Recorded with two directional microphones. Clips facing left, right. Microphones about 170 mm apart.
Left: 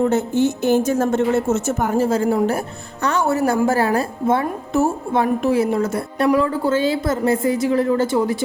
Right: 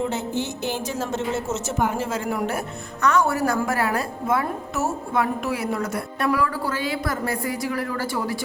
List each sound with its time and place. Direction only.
0.0 s a woman's voice: 50° left (ahead or behind); by 8.4 s 20° left (ahead or behind)